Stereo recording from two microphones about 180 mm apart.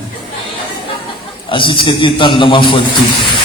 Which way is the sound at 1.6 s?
25° left (ahead or behind).